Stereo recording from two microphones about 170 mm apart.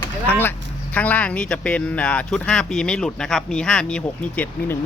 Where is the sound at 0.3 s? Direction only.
10° left (ahead or behind).